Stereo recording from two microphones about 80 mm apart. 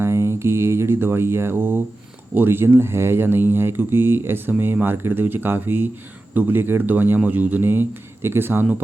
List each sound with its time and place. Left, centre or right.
0.0 s speech: right